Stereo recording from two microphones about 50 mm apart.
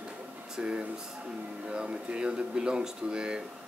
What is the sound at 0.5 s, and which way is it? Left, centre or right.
Speech, right.